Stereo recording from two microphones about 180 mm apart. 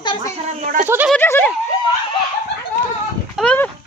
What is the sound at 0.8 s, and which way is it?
Speech, 10° right (ahead or behind).